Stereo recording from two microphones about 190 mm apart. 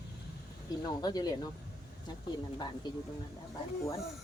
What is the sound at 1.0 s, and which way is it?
Speech, 20° left (ahead or behind).